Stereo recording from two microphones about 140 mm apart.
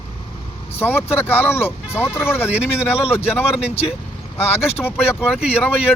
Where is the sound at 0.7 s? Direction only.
15° left (ahead or behind).